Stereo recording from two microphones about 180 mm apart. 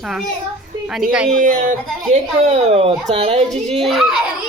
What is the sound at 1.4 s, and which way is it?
Speech, 50° right (ahead or behind).